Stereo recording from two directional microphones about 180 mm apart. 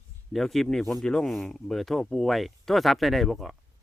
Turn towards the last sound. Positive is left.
turn(degrees=0)  # may be behind; listen again after turning